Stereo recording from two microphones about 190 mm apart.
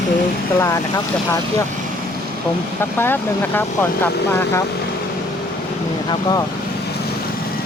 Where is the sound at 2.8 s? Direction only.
10° left (ahead or behind).